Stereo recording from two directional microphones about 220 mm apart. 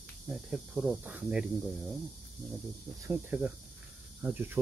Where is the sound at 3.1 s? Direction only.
5° right (ahead or behind).